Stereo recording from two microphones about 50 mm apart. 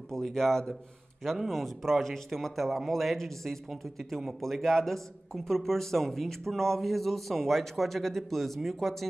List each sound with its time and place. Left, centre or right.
0.1 s a man's voice: centre